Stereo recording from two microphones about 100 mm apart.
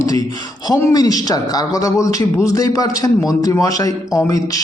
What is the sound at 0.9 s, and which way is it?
A man's voice, 40° left (ahead or behind).